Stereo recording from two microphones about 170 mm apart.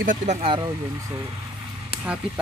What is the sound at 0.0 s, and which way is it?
Speech, 50° right (ahead or behind).